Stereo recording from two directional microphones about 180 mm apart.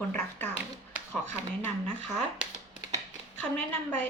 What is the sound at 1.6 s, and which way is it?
Speech, 5° left (ahead or behind).